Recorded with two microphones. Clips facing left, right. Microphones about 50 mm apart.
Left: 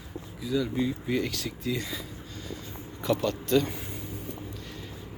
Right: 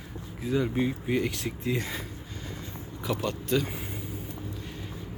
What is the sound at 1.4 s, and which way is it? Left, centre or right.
Speech, right.